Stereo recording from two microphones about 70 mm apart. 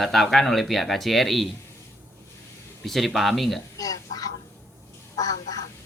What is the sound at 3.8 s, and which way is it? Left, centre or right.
A woman's voice, left.